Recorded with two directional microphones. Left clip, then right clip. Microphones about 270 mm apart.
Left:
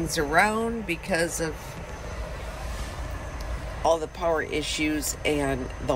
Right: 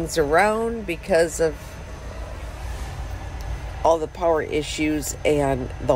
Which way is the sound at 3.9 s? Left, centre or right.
Centre.